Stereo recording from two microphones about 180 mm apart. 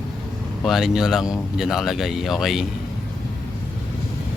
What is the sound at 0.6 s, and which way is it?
Speech, centre (ahead or behind).